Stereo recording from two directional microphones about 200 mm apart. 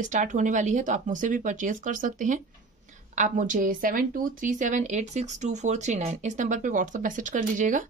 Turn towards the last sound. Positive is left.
turn(degrees=-40)  # may be behind; listen again after turning